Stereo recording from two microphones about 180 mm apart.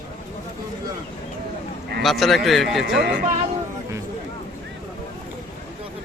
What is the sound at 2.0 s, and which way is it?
Speech, centre (ahead or behind).